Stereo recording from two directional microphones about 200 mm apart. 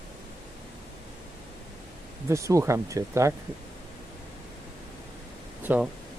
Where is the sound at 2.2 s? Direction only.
15° right (ahead or behind).